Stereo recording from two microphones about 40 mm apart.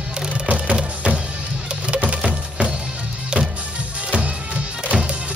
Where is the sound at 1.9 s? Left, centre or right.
Right.